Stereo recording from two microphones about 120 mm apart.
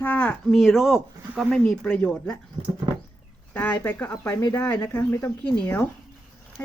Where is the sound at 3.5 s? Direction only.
15° left (ahead or behind).